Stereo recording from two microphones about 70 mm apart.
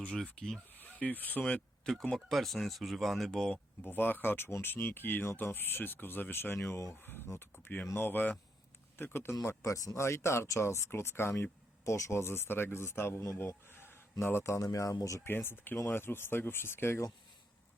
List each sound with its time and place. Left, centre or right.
0.0 s speech: centre
0.8 s speech: left
3.8 s speech: left
15.2 s speech: left